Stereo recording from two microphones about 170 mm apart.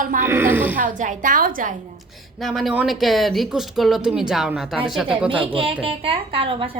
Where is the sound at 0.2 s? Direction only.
15° right (ahead or behind).